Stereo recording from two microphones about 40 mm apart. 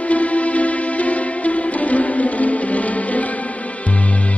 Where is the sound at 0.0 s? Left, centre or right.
Left.